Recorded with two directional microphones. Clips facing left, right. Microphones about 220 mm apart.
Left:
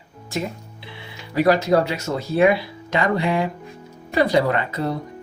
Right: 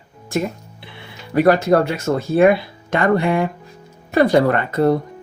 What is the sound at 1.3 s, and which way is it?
Speech, 55° right (ahead or behind).